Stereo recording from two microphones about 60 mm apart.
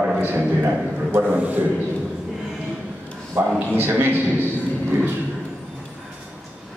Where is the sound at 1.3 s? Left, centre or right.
Right.